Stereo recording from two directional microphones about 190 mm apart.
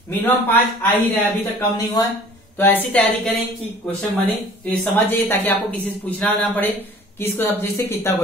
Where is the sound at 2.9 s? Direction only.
5° left (ahead or behind).